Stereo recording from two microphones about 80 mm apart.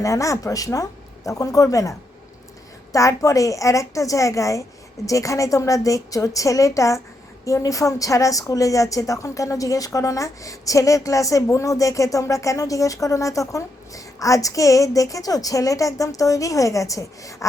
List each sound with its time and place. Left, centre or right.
0.0 s a woman's voice: left